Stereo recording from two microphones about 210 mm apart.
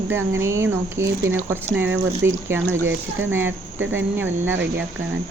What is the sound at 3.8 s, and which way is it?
Speech, 65° right (ahead or behind).